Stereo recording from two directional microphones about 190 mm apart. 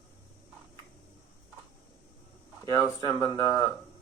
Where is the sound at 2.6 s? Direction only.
15° left (ahead or behind).